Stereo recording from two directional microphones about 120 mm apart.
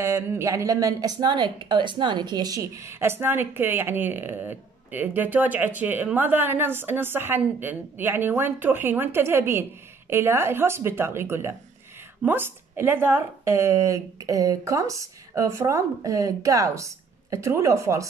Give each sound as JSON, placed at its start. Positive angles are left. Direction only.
{"t": 0.0, "sound": "speech", "side_deg": -25}